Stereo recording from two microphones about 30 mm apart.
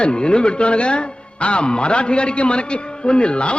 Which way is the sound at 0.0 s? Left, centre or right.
Left.